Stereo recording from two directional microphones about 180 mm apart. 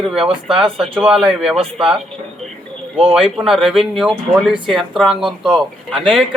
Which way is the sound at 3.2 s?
Centre (ahead or behind).